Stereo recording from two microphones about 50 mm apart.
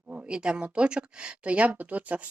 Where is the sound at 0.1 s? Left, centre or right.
Right.